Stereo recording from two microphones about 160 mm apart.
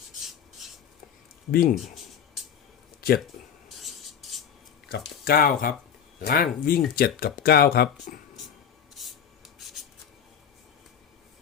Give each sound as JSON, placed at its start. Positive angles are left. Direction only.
{"t": 0.2, "sound": "filing", "side_deg": 0}
{"t": 1.5, "sound": "speech", "side_deg": 65}
{"t": 3.8, "sound": "rub", "side_deg": 0}
{"t": 4.9, "sound": "speech", "side_deg": 70}
{"t": 9.0, "sound": "rub", "side_deg": 0}